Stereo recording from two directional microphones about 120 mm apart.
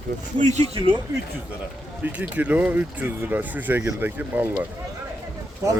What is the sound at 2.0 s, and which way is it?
Speech, 10° right (ahead or behind).